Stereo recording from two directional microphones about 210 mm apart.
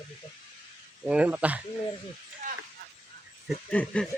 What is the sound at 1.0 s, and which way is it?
Speech, 5° right (ahead or behind).